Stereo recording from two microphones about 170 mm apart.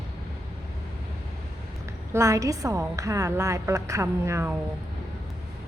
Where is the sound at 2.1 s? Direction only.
20° right (ahead or behind).